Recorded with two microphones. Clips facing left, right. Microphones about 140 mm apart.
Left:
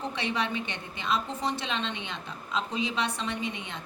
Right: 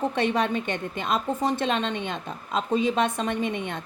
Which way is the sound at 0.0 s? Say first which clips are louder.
Right 7 dB; 50° right (ahead or behind).